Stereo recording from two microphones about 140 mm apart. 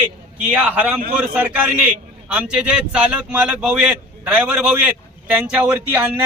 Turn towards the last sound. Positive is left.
turn(degrees=-10)  # may be behind; listen again after turning